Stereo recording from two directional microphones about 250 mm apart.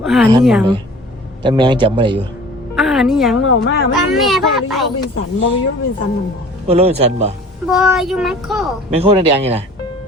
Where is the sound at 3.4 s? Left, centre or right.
Left.